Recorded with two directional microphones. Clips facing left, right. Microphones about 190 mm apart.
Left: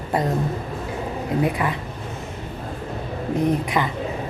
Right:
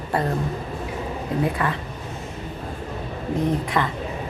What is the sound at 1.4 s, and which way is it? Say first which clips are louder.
Speech: left 1 dB; 15° left (ahead or behind).